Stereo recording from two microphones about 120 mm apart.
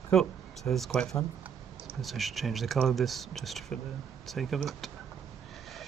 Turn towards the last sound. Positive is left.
turn(degrees=0)  # may be behind; listen again after turning